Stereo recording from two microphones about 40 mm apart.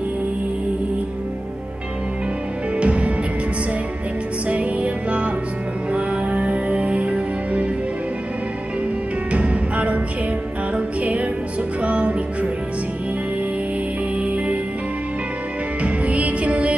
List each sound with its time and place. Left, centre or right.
2.8 s music: right
4.5 s music: right
9.3 s music: right
14.2 s music: right
15.8 s music: right